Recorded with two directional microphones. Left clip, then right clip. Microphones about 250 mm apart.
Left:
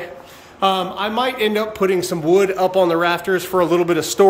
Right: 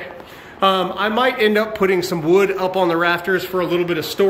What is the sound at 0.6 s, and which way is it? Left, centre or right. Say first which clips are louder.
A man's voice: right 2 dB; centre.